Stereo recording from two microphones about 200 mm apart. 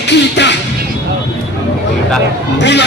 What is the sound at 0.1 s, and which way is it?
Music, 60° left (ahead or behind).